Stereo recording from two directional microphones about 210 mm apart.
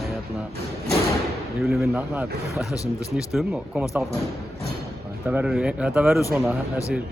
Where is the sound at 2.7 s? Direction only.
15° left (ahead or behind).